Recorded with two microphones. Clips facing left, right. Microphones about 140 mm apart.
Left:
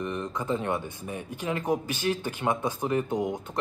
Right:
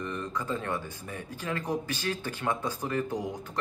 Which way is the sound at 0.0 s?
20° left (ahead or behind).